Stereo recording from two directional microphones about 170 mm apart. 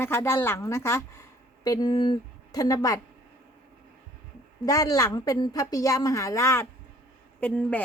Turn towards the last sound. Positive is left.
turn(degrees=10)  # may be behind; listen again after turning